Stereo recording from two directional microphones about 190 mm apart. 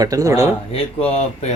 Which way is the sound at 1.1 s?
35° left (ahead or behind).